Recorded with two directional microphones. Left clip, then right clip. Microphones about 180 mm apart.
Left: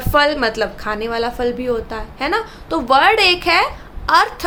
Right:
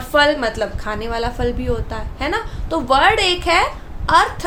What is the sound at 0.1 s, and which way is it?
A woman's voice, 20° left (ahead or behind).